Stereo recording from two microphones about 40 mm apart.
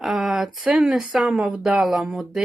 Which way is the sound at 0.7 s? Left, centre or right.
Centre.